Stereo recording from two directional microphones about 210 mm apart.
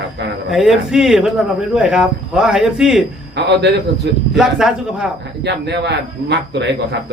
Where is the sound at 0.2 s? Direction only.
55° right (ahead or behind).